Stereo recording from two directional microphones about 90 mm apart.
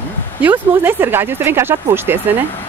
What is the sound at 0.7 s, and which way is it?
Speech, 20° right (ahead or behind).